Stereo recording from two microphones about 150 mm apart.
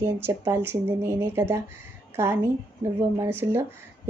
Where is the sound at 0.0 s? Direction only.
15° right (ahead or behind).